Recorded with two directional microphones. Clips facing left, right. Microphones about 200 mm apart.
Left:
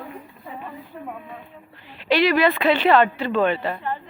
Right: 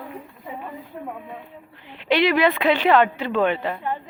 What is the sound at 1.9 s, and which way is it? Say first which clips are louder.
Speech: even; 20° right (ahead or behind).